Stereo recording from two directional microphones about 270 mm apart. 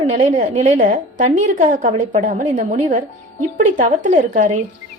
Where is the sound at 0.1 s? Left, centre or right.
Right.